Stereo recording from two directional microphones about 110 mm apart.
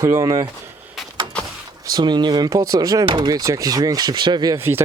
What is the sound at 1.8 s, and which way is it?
Speech, 40° right (ahead or behind).